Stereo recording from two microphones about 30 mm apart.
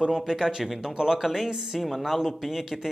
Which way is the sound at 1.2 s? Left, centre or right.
Centre.